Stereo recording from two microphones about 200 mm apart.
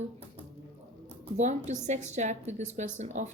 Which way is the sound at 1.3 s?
35° right (ahead or behind).